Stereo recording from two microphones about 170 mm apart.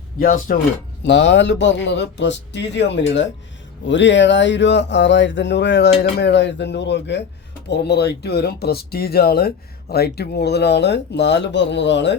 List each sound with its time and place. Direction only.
0.2 s speech: 55° left (ahead or behind)
1.0 s speech: 90° left
7.7 s speech: 80° left